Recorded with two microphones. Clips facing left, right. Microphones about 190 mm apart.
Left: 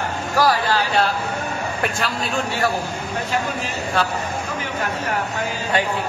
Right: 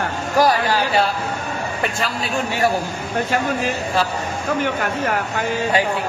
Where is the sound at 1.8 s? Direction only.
Centre (ahead or behind).